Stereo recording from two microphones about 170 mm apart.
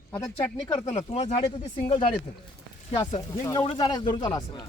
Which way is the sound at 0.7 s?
40° left (ahead or behind).